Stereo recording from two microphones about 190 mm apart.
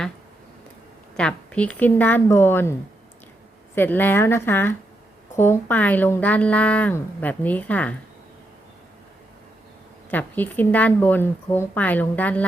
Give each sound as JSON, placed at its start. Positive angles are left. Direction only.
{"t": 1.1, "sound": "a woman's voice", "side_deg": 5}
{"t": 3.8, "sound": "a woman's voice", "side_deg": 10}
{"t": 10.1, "sound": "a woman's voice", "side_deg": 10}